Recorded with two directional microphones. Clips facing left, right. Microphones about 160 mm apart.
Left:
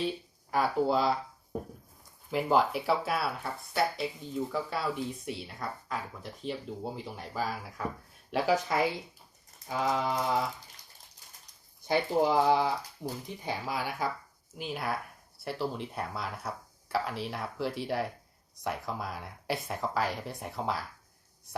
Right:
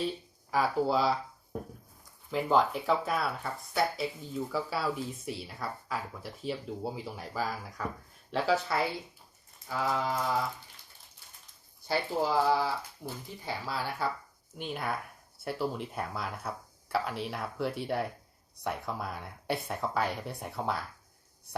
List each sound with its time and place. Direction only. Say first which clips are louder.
0.5 s speech: left 1 dB; centre (ahead or behind)
2.3 s speech: even; 5° left (ahead or behind)
8.3 s speech: left 1 dB; 10° left (ahead or behind)
11.9 s speech: left 3 dB; 20° left (ahead or behind)
14.6 s speech: left 1 dB; centre (ahead or behind)